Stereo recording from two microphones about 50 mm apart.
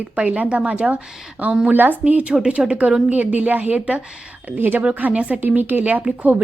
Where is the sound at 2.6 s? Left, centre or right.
Centre.